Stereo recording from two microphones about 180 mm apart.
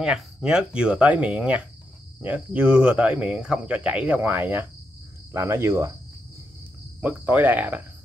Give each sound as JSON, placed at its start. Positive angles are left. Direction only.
{"t": 0.0, "sound": "speech", "side_deg": -5}
{"t": 7.0, "sound": "speech", "side_deg": -10}